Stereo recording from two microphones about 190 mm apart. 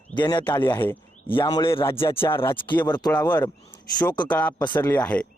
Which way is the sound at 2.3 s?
10° left (ahead or behind).